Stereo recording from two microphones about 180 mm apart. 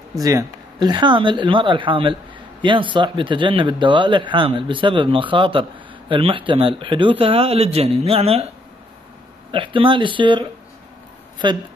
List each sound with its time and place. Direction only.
0.1 s a man's voice: 20° right (ahead or behind); by 8.5 s 35° right (ahead or behind)
9.5 s a man's voice: 30° right (ahead or behind)
11.4 s a man's voice: 25° right (ahead or behind)